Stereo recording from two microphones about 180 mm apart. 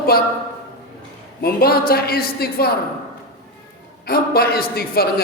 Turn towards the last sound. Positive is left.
turn(degrees=60)  # may be behind; listen again after turning